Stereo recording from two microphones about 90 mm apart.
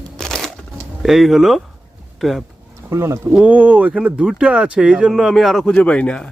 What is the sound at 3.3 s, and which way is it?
Speech, 15° right (ahead or behind).